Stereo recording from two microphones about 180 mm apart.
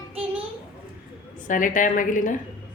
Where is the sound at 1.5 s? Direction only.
45° left (ahead or behind).